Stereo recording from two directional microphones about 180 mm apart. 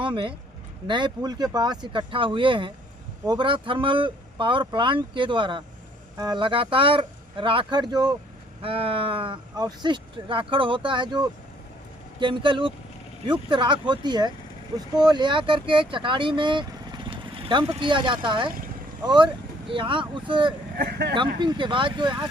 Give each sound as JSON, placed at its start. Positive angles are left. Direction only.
{"t": 0.0, "sound": "speech", "side_deg": -25}
{"t": 20.7, "sound": "speech", "side_deg": -60}
{"t": 21.3, "sound": "speech", "side_deg": -25}